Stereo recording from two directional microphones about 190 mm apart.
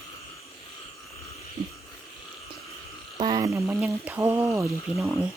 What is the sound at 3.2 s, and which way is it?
Frog, 30° right (ahead or behind).